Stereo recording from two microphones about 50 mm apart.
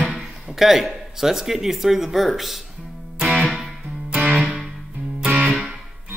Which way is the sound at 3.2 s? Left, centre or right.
Centre.